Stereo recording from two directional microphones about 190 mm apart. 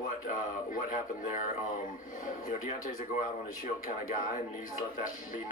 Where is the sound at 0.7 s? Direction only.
45° left (ahead or behind).